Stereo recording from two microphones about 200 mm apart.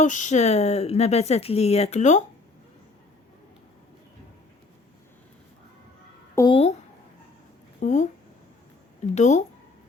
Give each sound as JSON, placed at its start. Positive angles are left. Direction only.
{"t": 0.0, "sound": "speech", "side_deg": 40}
{"t": 6.3, "sound": "speech", "side_deg": 20}
{"t": 7.8, "sound": "speech", "side_deg": 40}
{"t": 9.1, "sound": "speech", "side_deg": 35}